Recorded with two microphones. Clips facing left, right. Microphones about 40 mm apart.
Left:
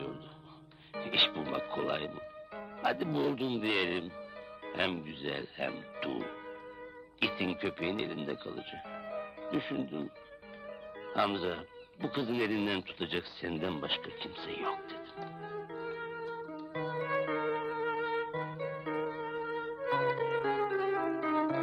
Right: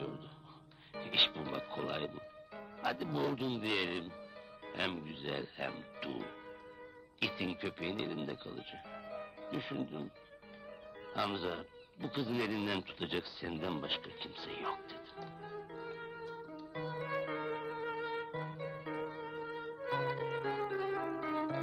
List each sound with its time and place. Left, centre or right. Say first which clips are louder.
1.1 s speech: left 3 dB; centre
3.6 s speech: left 4 dB; centre
4.6 s music: left 5 dB; centre
4.9 s speech: left 3 dB; centre
7.3 s speech: left 5 dB; centre
9.5 s speech: left 5 dB; centre
10.7 s music: left 6 dB; centre
11.4 s speech: left 3 dB; centre
12.6 s speech: left 3 dB; centre
15.4 s music: left 6 dB; centre